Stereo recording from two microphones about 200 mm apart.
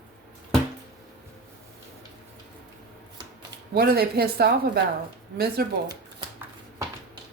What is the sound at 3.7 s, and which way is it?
Speech, 50° right (ahead or behind).